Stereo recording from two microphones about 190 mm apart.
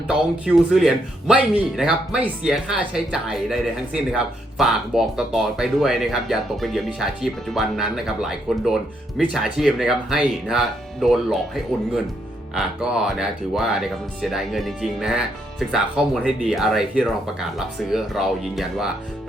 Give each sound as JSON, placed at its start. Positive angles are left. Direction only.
{"t": 0.1, "sound": "speech", "side_deg": -5}